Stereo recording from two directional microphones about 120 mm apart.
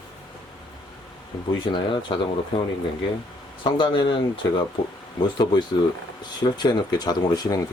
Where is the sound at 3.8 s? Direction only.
40° left (ahead or behind).